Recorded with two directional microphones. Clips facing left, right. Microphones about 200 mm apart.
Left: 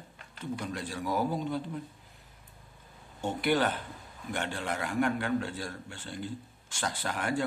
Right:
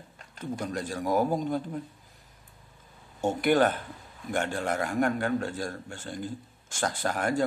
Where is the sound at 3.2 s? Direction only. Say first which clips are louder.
Right 5 dB; 45° right (ahead or behind).